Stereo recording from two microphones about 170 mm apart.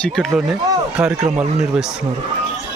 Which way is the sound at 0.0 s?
Centre (ahead or behind).